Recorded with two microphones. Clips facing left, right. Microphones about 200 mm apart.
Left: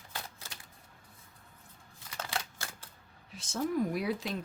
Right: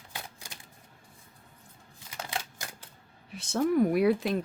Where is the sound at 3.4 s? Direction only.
60° right (ahead or behind).